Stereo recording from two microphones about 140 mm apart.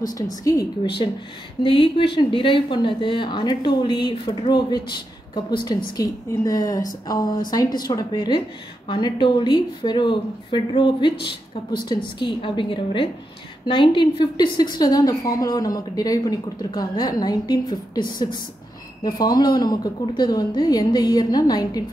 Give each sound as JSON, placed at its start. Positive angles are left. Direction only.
{"t": 0.1, "sound": "a woman's voice", "side_deg": 25}
{"t": 1.0, "sound": "a woman's voice", "side_deg": 40}
{"t": 19.0, "sound": "a woman's voice", "side_deg": 30}